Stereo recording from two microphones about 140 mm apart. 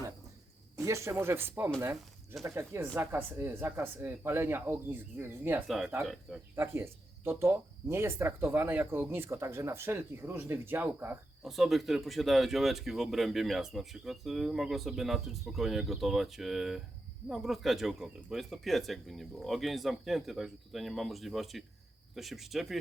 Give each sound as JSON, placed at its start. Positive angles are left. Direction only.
{"t": 0.8, "sound": "speech", "side_deg": -20}
{"t": 5.6, "sound": "speech", "side_deg": 0}
{"t": 6.6, "sound": "speech", "side_deg": -15}
{"t": 11.4, "sound": "speech", "side_deg": 0}